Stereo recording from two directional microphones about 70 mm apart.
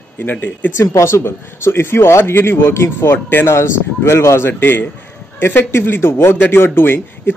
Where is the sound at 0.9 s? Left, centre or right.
Left.